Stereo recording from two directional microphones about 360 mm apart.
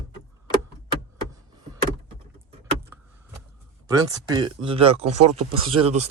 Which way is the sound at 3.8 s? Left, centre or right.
Centre.